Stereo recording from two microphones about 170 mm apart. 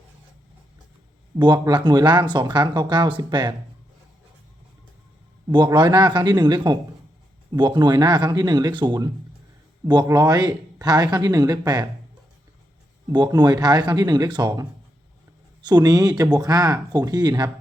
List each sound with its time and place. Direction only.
1.4 s speech: 25° right (ahead or behind)
5.5 s speech: 25° right (ahead or behind)
13.1 s speech: 20° right (ahead or behind)